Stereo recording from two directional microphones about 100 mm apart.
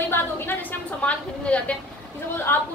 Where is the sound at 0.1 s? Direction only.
20° left (ahead or behind).